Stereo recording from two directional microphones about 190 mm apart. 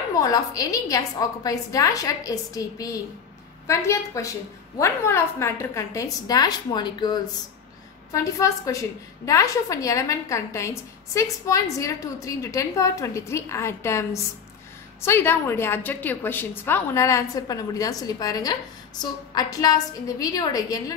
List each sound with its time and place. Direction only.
0.2 s a woman's voice: 20° left (ahead or behind)